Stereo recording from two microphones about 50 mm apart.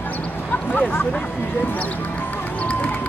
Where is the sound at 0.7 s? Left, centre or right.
Left.